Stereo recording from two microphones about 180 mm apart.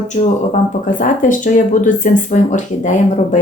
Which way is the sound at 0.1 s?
40° left (ahead or behind).